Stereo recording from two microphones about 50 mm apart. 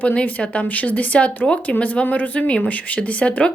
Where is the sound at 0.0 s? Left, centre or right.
Left.